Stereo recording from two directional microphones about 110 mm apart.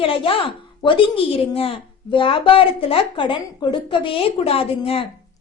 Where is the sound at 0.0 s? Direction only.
55° left (ahead or behind).